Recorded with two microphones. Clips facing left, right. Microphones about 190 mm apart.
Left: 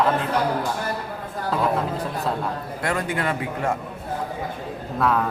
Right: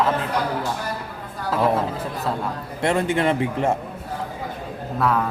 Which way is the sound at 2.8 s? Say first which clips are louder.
Right 5 dB; 25° right (ahead or behind).